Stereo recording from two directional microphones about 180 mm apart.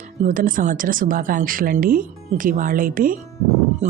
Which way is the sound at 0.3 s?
50° right (ahead or behind).